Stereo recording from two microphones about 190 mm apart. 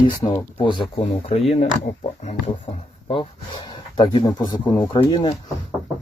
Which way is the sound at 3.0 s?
25° left (ahead or behind).